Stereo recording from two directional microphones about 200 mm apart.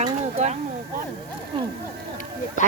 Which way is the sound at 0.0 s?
35° right (ahead or behind).